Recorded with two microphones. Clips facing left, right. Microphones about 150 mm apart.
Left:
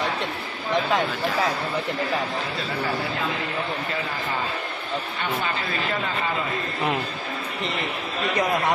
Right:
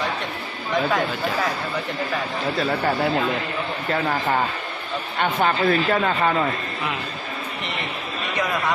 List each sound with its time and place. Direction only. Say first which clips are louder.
3.9 s speech: right 6 dB; 60° right (ahead or behind)